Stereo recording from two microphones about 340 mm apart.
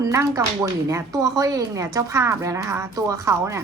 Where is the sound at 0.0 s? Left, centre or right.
Centre.